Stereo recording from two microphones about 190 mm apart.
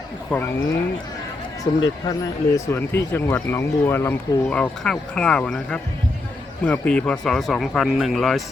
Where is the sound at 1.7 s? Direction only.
25° left (ahead or behind).